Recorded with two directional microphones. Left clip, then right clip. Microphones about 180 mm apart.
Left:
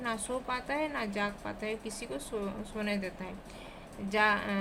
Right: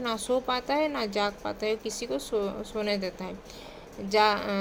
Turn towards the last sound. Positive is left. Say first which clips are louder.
# right 5 dB
turn(degrees=-30)  # may be behind; listen again after turning